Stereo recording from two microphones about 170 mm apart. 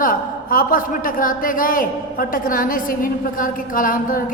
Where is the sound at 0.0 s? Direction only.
55° left (ahead or behind).